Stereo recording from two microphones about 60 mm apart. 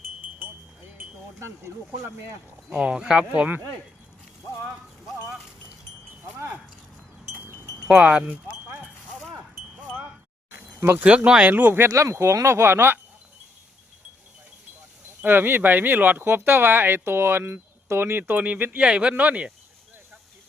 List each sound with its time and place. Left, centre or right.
1.4 s speech: right
2.8 s speech: centre
3.3 s speech: right
7.9 s speech: centre
8.3 s a sound: right
10.9 s speech: right
11.4 s speech: right
11.9 s speech: right
15.2 s speech: right